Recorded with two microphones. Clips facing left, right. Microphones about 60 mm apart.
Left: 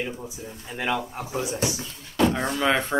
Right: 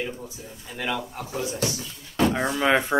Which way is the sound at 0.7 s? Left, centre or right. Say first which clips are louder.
Left 2 dB; centre.